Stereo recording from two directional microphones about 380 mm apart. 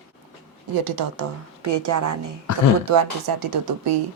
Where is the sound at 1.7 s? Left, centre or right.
Right.